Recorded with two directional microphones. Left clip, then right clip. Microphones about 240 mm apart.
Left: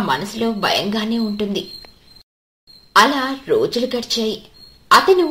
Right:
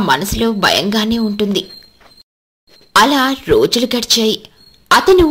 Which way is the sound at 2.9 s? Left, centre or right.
Right.